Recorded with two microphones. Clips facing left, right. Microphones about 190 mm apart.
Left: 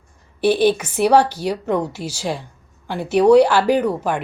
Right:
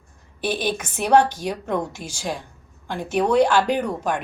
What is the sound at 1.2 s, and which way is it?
Speech, 65° left (ahead or behind).